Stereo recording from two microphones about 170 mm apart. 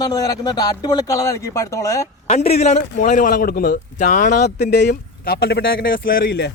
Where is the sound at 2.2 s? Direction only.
40° left (ahead or behind).